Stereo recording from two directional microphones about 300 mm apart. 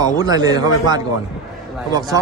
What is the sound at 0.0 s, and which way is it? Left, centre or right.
Speech, centre.